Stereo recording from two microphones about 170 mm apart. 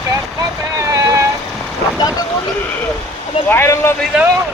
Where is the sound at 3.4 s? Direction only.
15° left (ahead or behind).